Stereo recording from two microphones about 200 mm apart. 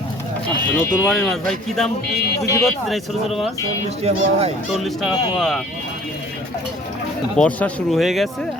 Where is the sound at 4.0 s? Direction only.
30° right (ahead or behind).